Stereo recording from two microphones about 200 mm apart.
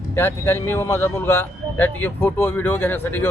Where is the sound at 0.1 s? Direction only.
10° left (ahead or behind).